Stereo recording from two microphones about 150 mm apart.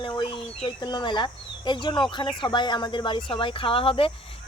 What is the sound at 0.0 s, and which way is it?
Speech, 35° left (ahead or behind).